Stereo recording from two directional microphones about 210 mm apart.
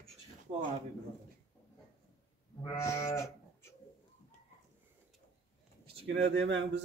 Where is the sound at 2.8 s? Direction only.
15° left (ahead or behind).